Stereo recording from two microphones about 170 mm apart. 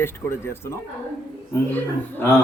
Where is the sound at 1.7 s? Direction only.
10° left (ahead or behind).